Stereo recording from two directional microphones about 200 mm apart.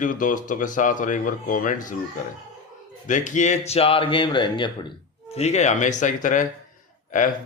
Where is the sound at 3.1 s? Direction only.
35° left (ahead or behind).